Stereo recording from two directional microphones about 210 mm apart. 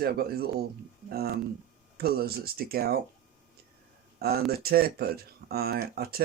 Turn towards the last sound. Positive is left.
turn(degrees=-45)  # may be behind; listen again after turning